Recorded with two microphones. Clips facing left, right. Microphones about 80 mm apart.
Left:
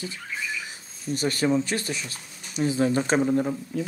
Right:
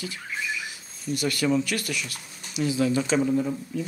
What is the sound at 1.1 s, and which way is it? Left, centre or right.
Speech, left.